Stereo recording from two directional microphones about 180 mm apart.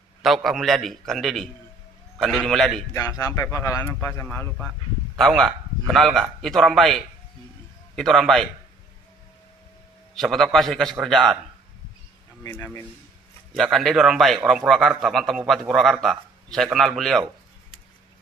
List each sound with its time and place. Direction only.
0.2 s a man's voice: centre (ahead or behind)
2.9 s a man's voice: 20° left (ahead or behind); by 8.5 s centre (ahead or behind)
10.1 s a man's voice: centre (ahead or behind)
12.4 s speech: 15° left (ahead or behind)
13.5 s a man's voice: centre (ahead or behind)